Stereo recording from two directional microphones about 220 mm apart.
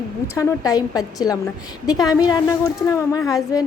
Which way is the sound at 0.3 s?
15° left (ahead or behind).